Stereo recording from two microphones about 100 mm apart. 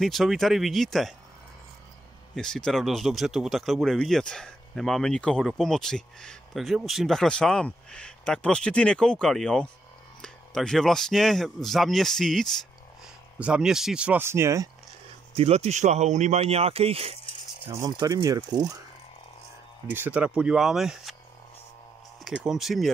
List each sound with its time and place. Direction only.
0.0 s speech: centre (ahead or behind)
2.3 s speech: 5° left (ahead or behind)
13.4 s speech: 10° right (ahead or behind)
14.2 s speech: 25° right (ahead or behind)
15.3 s speech: 90° right
17.8 s speech: 40° right (ahead or behind)
19.9 s speech: 15° right (ahead or behind)
22.2 s speech: 5° right (ahead or behind)